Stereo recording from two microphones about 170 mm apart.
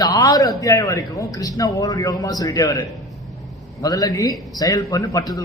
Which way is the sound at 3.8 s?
20° left (ahead or behind).